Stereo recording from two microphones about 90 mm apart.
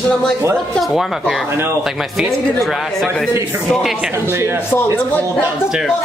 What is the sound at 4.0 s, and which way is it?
Speech, 25° right (ahead or behind).